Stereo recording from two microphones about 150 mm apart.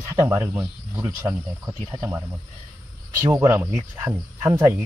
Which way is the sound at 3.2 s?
20° right (ahead or behind).